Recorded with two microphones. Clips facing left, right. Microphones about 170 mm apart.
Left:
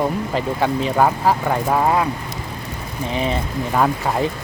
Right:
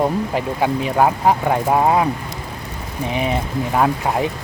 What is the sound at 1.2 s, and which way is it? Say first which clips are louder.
Speech: right 2 dB; 20° right (ahead or behind).